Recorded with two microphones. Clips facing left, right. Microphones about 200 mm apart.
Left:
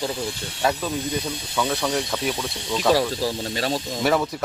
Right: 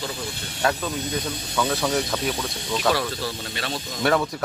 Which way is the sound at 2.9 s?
35° left (ahead or behind).